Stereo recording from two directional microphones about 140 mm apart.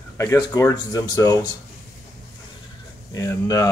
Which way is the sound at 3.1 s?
25° left (ahead or behind).